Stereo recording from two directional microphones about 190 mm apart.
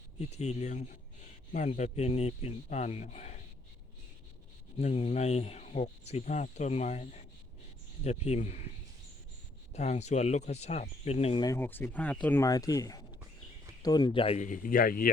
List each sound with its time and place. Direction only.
0.3 s speech: 35° left (ahead or behind)
4.8 s speech: 30° left (ahead or behind)
9.7 s speech: 35° left (ahead or behind)